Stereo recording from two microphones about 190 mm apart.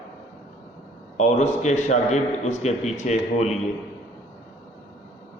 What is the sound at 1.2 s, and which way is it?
A man's voice, 40° left (ahead or behind).